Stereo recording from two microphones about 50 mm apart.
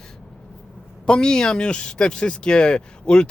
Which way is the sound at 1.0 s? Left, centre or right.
Centre.